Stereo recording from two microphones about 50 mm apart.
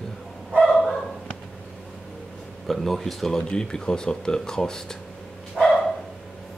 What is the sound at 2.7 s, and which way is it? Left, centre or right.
Speech, centre.